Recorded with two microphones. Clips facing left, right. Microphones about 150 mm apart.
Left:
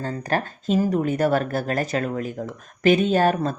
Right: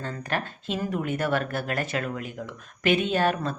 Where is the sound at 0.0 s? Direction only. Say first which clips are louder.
Left 5 dB; 40° left (ahead or behind).